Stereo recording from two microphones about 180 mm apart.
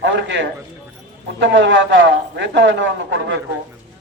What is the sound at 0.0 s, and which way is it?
A man's voice, 90° right.